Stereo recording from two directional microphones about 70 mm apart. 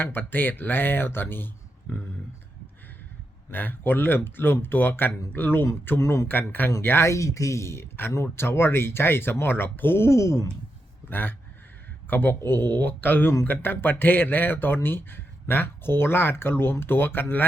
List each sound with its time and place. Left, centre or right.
0.0 s speech: left
3.5 s speech: left
6.0 s speech: left
6.2 s speech: left
11.1 s speech: left